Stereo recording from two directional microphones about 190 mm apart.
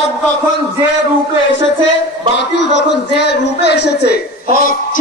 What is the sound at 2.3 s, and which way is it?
Speech, 65° left (ahead or behind).